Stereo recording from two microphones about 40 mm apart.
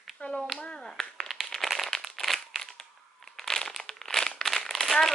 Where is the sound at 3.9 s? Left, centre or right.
Centre.